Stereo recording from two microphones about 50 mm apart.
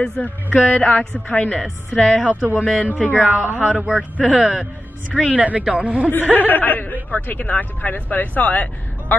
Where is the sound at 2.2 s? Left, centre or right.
Right.